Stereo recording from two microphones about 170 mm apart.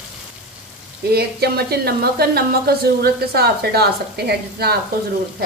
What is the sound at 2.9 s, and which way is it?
Speech, 65° right (ahead or behind).